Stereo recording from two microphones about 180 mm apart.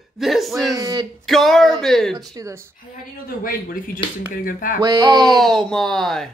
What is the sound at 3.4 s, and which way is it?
Speech, 50° left (ahead or behind).